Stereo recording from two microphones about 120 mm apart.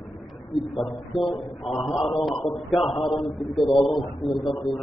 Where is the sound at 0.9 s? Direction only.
45° left (ahead or behind).